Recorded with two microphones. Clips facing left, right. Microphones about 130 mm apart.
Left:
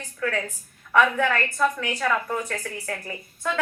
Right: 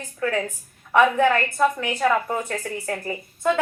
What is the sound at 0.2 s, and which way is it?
A woman's voice, 30° right (ahead or behind).